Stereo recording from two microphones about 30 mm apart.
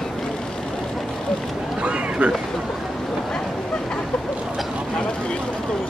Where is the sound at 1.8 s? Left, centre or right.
Right.